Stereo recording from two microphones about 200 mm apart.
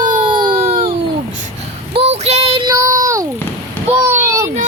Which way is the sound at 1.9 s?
35° right (ahead or behind).